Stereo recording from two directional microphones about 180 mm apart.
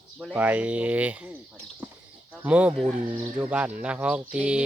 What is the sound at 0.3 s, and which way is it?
Speech, 10° right (ahead or behind).